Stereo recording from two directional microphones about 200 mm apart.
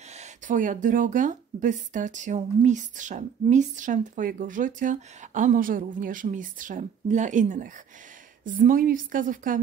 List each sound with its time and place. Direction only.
0.2 s a woman's voice: 40° right (ahead or behind)